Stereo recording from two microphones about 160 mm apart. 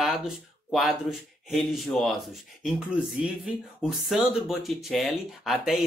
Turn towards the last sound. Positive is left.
turn(degrees=0)  # may be behind; listen again after turning